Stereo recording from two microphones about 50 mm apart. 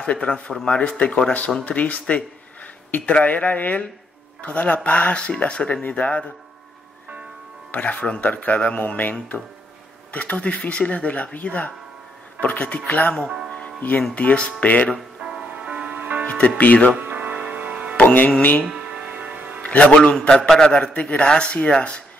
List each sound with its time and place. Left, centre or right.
0.0 s speech: left
7.7 s speech: left
10.1 s speech: left
13.5 s music: left
14.1 s speech: left
15.2 s music: right
15.9 s music: right
16.3 s speech: left
17.0 s music: right
17.3 s music: right
17.9 s music: left
18.8 s music: right
19.6 s a man's voice: left
20.4 s speech: centre